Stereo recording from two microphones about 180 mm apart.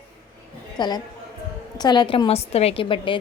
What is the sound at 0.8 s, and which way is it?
A woman's voice, 25° left (ahead or behind).